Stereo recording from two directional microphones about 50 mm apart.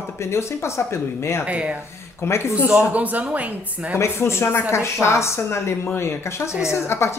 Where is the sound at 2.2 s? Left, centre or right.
Left.